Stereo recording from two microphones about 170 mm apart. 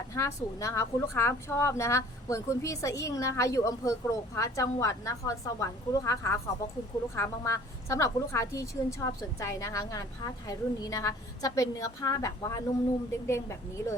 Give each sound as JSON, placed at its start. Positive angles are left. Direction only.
{"t": 0.1, "sound": "a woman's voice", "side_deg": 20}